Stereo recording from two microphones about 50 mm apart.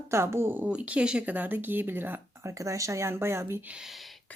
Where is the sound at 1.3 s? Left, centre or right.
Right.